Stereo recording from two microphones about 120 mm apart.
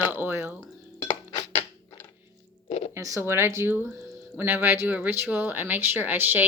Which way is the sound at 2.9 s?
25° right (ahead or behind).